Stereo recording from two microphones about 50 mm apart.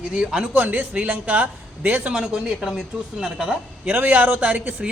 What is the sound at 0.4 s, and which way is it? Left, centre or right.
Speech, right.